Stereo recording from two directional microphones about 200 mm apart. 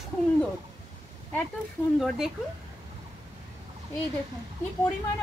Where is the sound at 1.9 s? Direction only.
Centre (ahead or behind).